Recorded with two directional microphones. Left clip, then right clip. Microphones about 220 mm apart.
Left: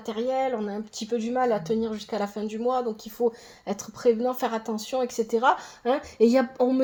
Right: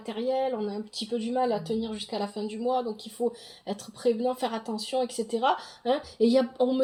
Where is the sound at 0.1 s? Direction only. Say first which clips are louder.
Left 2 dB; 25° left (ahead or behind).